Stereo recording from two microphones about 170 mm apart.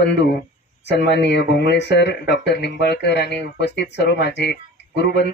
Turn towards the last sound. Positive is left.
turn(degrees=80)